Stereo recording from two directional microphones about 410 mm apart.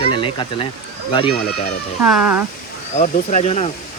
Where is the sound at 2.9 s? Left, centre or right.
Centre.